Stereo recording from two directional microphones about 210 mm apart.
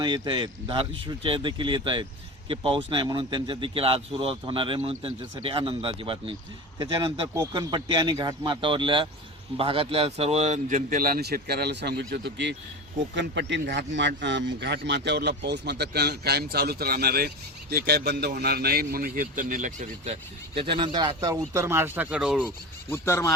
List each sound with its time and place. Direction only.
0.0 s a man's voice: 20° right (ahead or behind); by 20.1 s 40° right (ahead or behind)
20.6 s speech: 25° right (ahead or behind); by 22.4 s 5° right (ahead or behind)
22.4 s speech: 10° left (ahead or behind)